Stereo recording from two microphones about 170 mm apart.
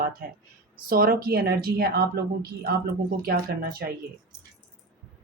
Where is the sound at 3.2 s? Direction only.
65° right (ahead or behind).